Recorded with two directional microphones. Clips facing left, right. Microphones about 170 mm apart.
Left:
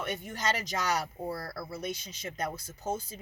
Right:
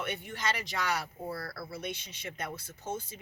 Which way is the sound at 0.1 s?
40° left (ahead or behind).